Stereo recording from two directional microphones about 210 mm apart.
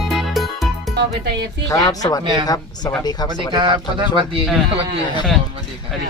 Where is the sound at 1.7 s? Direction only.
15° left (ahead or behind).